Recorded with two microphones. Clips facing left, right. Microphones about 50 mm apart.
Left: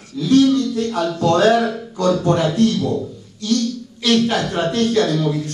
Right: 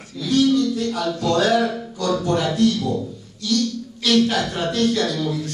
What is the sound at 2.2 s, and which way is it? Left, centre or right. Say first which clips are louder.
Speech: left 3 dB; left.